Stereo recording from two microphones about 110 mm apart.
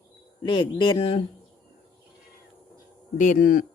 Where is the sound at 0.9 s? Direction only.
60° left (ahead or behind).